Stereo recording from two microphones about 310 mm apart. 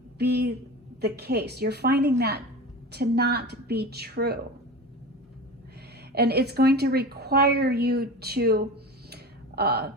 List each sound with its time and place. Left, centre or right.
0.2 s a woman's voice: right
6.1 s a woman's voice: right
9.0 s a sound: right